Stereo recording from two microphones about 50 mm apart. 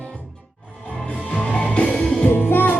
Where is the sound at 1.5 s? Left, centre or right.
Left.